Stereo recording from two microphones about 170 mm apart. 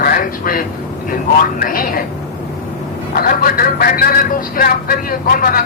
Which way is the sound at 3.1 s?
60° left (ahead or behind).